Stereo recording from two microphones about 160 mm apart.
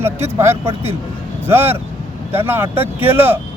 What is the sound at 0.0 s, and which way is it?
Speech, 15° right (ahead or behind).